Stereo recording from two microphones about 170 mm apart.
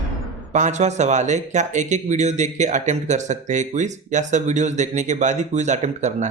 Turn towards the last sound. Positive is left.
turn(degrees=-45)  # may be behind; listen again after turning